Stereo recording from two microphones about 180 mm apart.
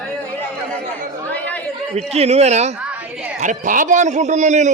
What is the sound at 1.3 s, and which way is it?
Chatter, 10° left (ahead or behind).